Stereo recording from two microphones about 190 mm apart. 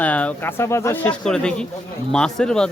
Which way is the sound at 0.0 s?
5° left (ahead or behind).